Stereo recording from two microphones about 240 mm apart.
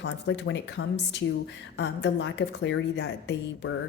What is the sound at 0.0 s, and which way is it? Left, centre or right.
A woman's voice, left.